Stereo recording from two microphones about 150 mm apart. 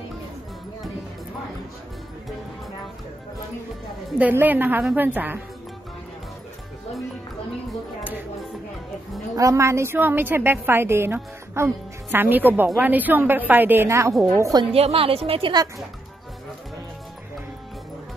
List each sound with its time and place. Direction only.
4.2 s a woman's voice: 10° right (ahead or behind)
9.3 s a woman's voice: 20° right (ahead or behind)
14.6 s a woman's voice: 40° right (ahead or behind)